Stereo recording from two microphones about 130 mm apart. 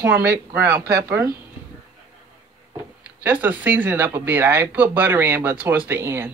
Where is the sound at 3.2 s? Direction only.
15° right (ahead or behind).